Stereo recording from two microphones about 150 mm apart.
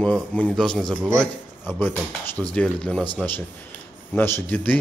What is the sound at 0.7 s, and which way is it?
Speech, 30° right (ahead or behind).